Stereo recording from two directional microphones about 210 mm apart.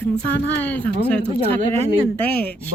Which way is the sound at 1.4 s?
30° right (ahead or behind).